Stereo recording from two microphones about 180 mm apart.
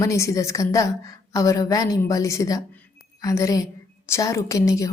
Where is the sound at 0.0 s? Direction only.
15° left (ahead or behind).